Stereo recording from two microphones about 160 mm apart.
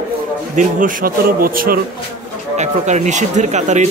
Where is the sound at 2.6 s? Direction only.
45° right (ahead or behind).